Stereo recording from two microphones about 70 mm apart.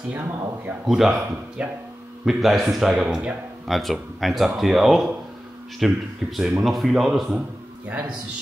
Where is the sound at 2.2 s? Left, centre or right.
Centre.